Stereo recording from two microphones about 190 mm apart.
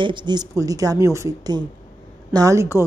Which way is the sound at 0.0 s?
25° right (ahead or behind).